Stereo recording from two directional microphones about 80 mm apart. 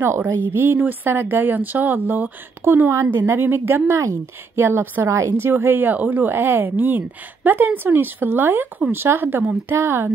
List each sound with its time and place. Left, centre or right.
0.0 s speech: right